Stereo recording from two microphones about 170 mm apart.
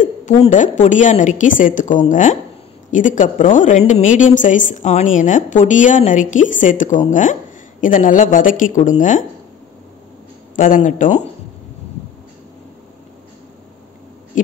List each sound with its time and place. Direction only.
0.0 s a woman's voice: 45° left (ahead or behind)
10.5 s a woman's voice: 50° left (ahead or behind)